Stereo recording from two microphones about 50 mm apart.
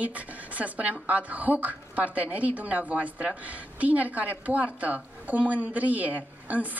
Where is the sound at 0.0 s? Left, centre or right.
Right.